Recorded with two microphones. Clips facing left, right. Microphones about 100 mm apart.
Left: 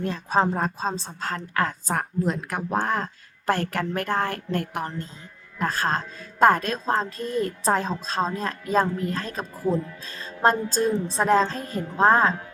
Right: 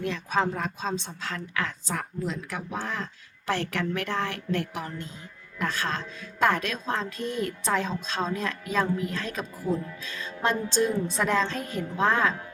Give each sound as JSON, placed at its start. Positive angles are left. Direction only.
{"t": 0.0, "sound": "a woman's voice", "side_deg": 35}